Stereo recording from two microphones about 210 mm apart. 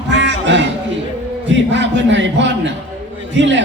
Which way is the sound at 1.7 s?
60° right (ahead or behind).